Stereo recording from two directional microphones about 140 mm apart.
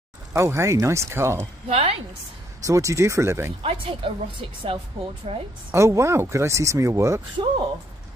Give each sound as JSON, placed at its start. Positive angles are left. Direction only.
{"t": 0.3, "sound": "speech", "side_deg": -20}
{"t": 1.7, "sound": "a woman's voice", "side_deg": -45}
{"t": 2.6, "sound": "speech", "side_deg": -25}
{"t": 3.6, "sound": "a woman's voice", "side_deg": -40}
{"t": 5.7, "sound": "speech", "side_deg": -20}
{"t": 7.4, "sound": "a woman's voice", "side_deg": -40}